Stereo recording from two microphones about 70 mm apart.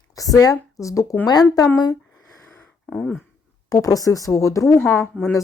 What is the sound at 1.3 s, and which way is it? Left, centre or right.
Speech, left.